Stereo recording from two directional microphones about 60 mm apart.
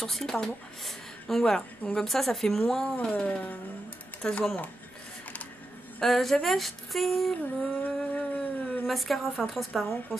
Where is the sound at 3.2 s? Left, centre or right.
Left.